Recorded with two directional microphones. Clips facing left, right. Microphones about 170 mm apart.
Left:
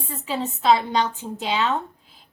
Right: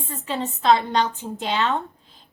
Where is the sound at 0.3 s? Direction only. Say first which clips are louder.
Even; 5° left (ahead or behind).